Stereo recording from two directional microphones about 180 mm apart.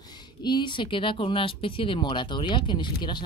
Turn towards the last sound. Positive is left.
turn(degrees=25)  # may be behind; listen again after turning